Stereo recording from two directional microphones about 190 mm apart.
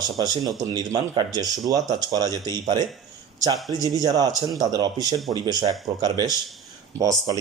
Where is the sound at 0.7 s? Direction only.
20° right (ahead or behind).